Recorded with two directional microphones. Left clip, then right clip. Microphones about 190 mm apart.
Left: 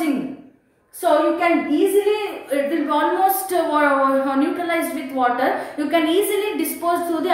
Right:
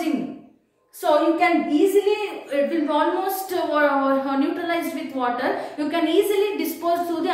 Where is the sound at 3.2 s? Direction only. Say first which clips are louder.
Left 6 dB; 20° left (ahead or behind).